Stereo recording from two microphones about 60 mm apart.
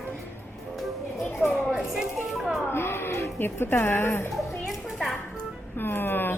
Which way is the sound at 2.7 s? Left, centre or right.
Left.